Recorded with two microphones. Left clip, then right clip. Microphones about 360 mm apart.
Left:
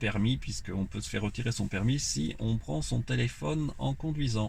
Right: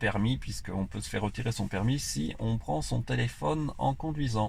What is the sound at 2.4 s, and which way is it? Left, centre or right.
Speech, right.